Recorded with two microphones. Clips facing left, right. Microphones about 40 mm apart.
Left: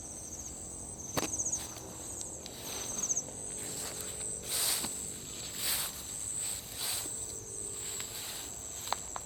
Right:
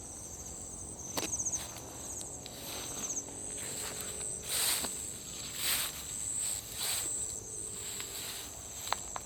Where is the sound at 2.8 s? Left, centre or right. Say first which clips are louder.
Left 2 dB; right.